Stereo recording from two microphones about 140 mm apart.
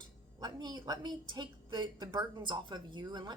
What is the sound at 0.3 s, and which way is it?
A woman's voice, 30° right (ahead or behind).